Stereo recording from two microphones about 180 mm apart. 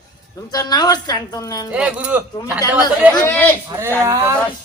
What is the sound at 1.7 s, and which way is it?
Speech, 5° right (ahead or behind).